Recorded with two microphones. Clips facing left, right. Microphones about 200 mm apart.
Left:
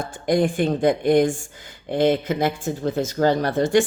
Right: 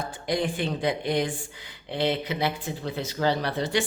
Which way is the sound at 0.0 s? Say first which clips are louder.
Left 7 dB; 50° left (ahead or behind).